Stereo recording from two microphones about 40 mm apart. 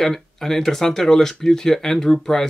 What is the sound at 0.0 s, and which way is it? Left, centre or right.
Speech, centre.